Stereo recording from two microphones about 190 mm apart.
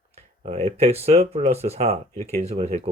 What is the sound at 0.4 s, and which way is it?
Speech, 35° right (ahead or behind).